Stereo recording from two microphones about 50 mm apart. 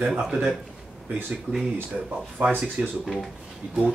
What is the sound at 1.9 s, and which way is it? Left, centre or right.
Speech, centre.